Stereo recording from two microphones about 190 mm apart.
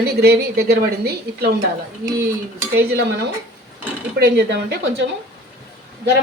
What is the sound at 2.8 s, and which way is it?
A woman's voice, 60° right (ahead or behind).